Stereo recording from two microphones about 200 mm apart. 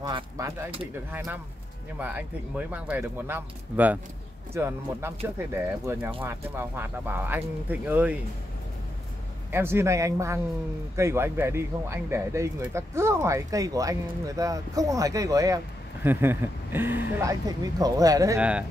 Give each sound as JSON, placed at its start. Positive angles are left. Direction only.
{"t": 0.0, "sound": "speech", "side_deg": -20}
{"t": 1.1, "sound": "speech", "side_deg": -10}
{"t": 9.5, "sound": "speech", "side_deg": -10}
{"t": 18.4, "sound": "speech", "side_deg": -5}